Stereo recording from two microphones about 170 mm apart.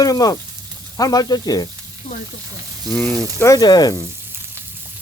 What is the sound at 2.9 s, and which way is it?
Speech, 5° left (ahead or behind).